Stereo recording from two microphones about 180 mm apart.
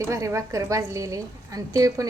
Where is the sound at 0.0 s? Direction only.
15° right (ahead or behind).